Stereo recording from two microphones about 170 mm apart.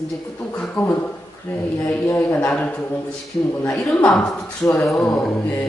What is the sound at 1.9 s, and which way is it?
A man's voice, 10° left (ahead or behind).